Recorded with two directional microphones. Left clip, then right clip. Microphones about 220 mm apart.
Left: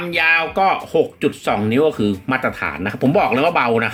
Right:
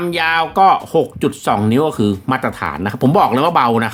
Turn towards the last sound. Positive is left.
turn(degrees=-60)  # may be behind; listen again after turning